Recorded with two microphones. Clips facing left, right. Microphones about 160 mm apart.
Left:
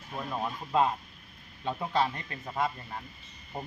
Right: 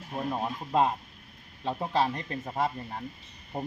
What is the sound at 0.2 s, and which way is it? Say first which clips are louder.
Speech: right 3 dB; 30° right (ahead or behind).